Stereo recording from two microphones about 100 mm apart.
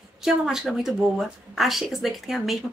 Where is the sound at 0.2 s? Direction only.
5° right (ahead or behind).